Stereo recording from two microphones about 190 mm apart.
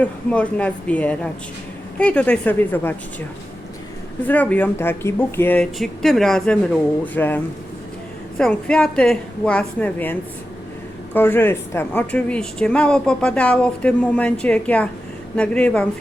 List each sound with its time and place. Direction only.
0.0 s a woman's voice: 5° left (ahead or behind)
4.3 s a woman's voice: 10° left (ahead or behind)